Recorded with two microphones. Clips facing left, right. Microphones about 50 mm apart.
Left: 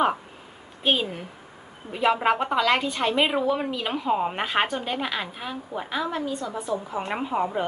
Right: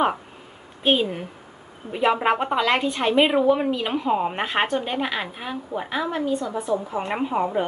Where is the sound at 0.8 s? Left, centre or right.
Centre.